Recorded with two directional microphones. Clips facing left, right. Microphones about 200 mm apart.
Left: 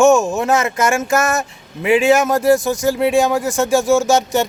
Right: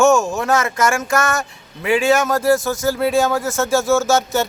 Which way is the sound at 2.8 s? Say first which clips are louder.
Left 2 dB; 15° left (ahead or behind).